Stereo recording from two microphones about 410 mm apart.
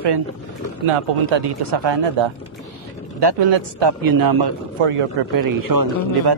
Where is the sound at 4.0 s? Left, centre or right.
Right.